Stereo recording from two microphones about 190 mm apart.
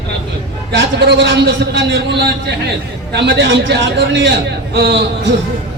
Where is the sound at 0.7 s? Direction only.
65° right (ahead or behind).